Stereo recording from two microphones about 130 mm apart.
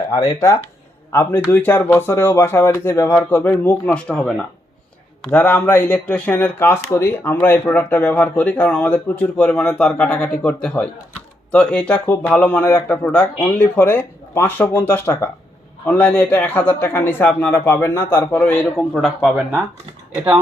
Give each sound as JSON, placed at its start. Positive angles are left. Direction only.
{"t": 0.1, "sound": "a man's voice", "side_deg": 25}